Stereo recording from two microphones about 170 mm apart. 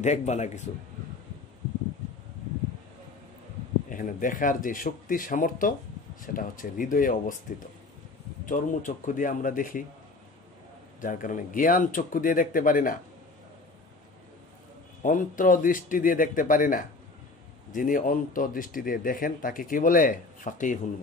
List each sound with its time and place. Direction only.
0.0 s speech: 40° left (ahead or behind)
3.9 s speech: 50° left (ahead or behind)
8.5 s speech: 50° left (ahead or behind)
11.0 s speech: 50° left (ahead or behind)
15.0 s speech: 50° left (ahead or behind)